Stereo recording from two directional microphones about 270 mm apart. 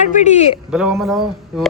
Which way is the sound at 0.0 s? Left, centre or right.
Left.